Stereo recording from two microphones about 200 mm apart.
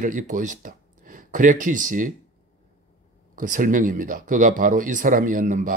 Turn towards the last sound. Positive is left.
turn(degrees=-40)  # may be behind; listen again after turning